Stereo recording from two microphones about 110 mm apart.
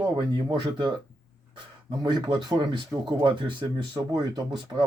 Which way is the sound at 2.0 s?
40° right (ahead or behind).